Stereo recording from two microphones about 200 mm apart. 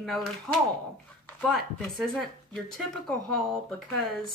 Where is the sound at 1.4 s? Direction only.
5° left (ahead or behind).